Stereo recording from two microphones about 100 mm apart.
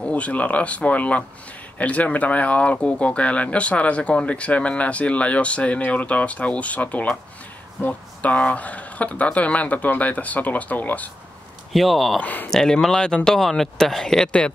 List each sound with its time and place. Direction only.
0.0 s speech: 15° left (ahead or behind)
11.7 s speech: centre (ahead or behind)
12.2 s speech: 15° left (ahead or behind)
12.4 s speech: 5° left (ahead or behind)